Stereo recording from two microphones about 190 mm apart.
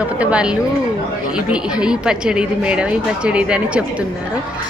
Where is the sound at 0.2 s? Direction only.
5° right (ahead or behind).